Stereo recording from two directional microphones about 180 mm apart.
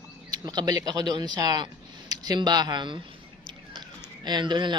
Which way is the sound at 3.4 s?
25° right (ahead or behind).